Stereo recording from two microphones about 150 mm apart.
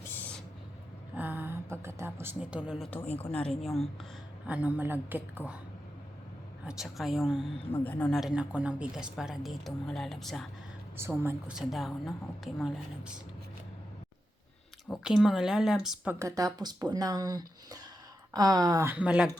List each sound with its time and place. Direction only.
0.1 s owl: 10° left (ahead or behind)
1.1 s a woman's voice: 10° right (ahead or behind)
4.4 s speech: 10° right (ahead or behind)
6.7 s speech: centre (ahead or behind)
7.7 s speech: 10° left (ahead or behind)
8.1 s speech: 5° right (ahead or behind)
11.2 s speech: 15° right (ahead or behind)
11.5 s speech: centre (ahead or behind)
15.0 s speech: centre (ahead or behind)
16.1 s speech: 20° right (ahead or behind)